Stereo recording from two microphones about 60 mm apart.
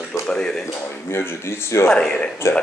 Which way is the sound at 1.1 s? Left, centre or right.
Left.